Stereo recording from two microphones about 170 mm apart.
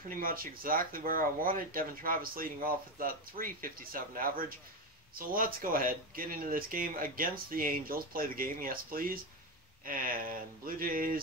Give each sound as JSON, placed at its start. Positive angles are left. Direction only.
{"t": 0.1, "sound": "speech", "side_deg": -55}